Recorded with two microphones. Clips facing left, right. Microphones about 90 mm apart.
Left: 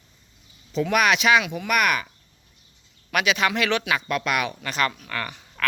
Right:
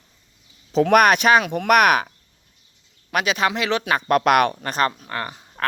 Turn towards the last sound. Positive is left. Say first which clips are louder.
# right 2 dB
turn(degrees=-30)  # may be behind; listen again after turning